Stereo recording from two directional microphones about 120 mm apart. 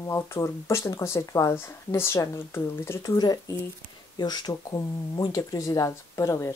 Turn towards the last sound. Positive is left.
turn(degrees=25)  # may be behind; listen again after turning